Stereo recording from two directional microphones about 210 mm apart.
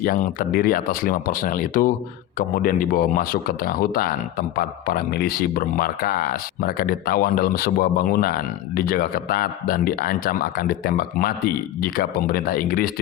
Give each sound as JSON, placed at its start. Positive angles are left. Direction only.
{"t": 0.0, "sound": "speech", "side_deg": 40}